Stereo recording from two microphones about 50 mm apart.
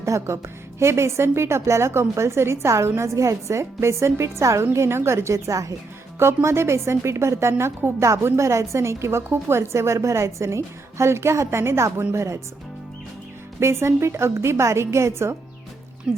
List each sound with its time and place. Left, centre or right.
0.0 s a woman's voice: right
3.0 s a woman's voice: right
4.7 s a woman's voice: right
6.1 s a woman's voice: right
7.8 s a woman's voice: right
8.2 s a woman's voice: right
13.6 s a woman's voice: right
16.1 s speech: centre